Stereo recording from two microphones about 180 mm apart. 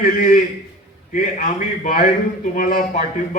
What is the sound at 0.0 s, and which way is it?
A man's voice, 50° left (ahead or behind).